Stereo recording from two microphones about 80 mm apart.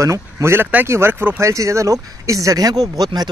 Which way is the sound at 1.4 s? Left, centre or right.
Right.